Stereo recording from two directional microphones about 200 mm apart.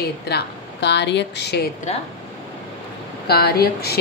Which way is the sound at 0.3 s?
55° left (ahead or behind).